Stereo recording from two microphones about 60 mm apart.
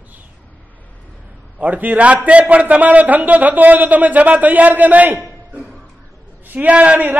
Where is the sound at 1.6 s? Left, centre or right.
Right.